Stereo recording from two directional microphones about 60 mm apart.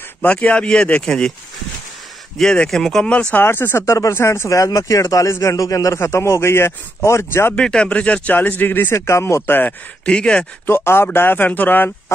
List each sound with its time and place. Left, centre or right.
0.2 s speech: left
2.7 s speech: centre
3.3 s a man's voice: left
5.9 s speech: left
7.5 s speech: centre; by 8.9 s left
8.9 s speech: left
10.0 s speech: centre
10.7 s speech: left